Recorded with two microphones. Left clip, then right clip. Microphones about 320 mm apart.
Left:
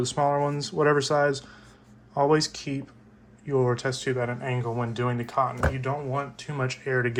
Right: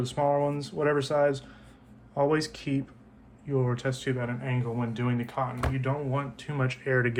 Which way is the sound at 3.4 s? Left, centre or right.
Centre.